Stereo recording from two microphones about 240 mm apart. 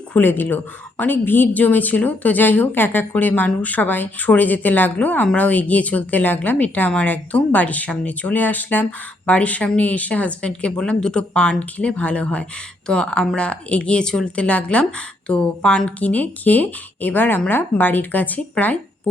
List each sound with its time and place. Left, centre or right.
0.1 s a woman's voice: centre